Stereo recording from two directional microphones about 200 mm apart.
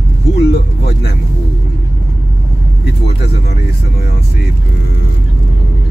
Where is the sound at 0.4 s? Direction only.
55° left (ahead or behind).